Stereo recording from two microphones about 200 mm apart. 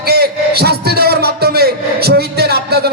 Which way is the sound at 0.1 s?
50° right (ahead or behind).